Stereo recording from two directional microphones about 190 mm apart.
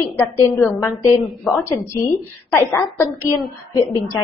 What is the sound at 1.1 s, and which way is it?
Speech, centre (ahead or behind).